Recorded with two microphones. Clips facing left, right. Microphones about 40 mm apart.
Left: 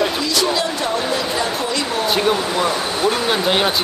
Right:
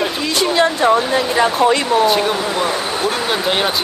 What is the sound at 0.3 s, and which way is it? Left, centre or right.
Speech, right.